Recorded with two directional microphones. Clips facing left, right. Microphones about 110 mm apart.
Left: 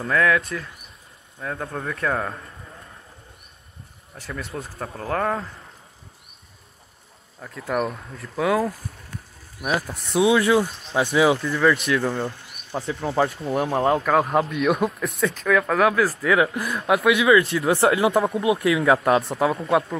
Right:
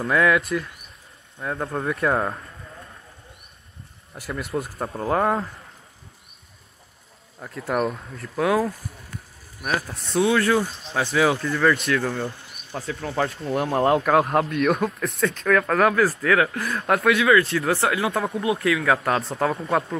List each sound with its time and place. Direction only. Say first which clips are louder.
0.0 s speech: right 1 dB; 5° right (ahead or behind)
2.0 s speech: right 2 dB; 25° right (ahead or behind)
4.1 s speech: right 4 dB; 10° right (ahead or behind)
7.3 s speech: right 1 dB; 5° right (ahead or behind)
9.6 s speech: left 2 dB; 15° left (ahead or behind)
13.4 s speech: even; centre (ahead or behind)
16.3 s speech: left 1 dB; 15° left (ahead or behind)
17.2 s speech: left 1 dB; 25° left (ahead or behind)
19.2 s speech: left 2 dB; 5° left (ahead or behind)